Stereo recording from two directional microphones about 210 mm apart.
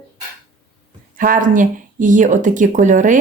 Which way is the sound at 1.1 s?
40° right (ahead or behind).